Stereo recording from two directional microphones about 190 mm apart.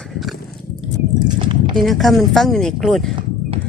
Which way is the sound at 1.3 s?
25° right (ahead or behind).